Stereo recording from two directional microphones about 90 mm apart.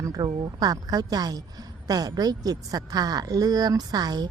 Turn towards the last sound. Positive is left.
turn(degrees=-50)  # may be behind; listen again after turning